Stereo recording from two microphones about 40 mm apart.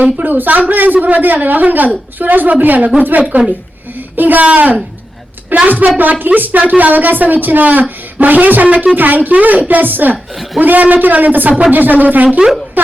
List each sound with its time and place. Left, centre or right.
0.2 s speech: right
0.9 s a man's voice: right
1.2 s a man's voice: right
9.0 s speech: right
12.8 s a sound: right